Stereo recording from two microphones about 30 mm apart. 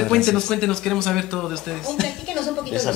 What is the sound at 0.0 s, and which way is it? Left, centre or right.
A woman's voice, centre.